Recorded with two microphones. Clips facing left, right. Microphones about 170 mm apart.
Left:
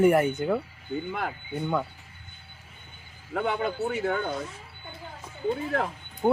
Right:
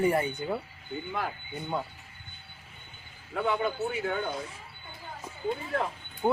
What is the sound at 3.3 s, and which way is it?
Speech, 65° left (ahead or behind).